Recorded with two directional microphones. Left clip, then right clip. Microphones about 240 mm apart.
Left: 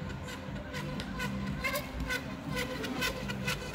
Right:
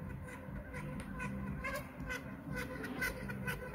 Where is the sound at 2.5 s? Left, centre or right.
Left.